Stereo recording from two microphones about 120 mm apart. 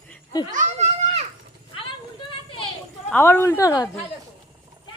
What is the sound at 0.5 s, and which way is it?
Goat, 80° right.